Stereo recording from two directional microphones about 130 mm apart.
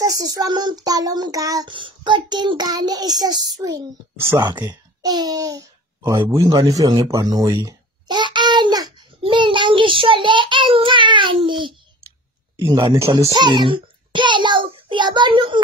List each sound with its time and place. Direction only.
0.0 s child singing: 25° right (ahead or behind)
1.7 s child singing: 40° right (ahead or behind)
4.4 s speech: 35° right (ahead or behind)
9.2 s child singing: 40° right (ahead or behind)